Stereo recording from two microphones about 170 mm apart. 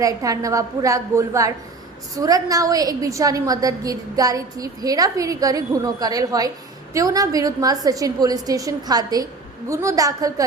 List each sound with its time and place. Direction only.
0.0 s a woman's voice: 20° right (ahead or behind)